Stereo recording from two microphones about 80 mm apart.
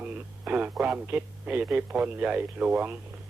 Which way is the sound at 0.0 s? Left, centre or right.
Centre.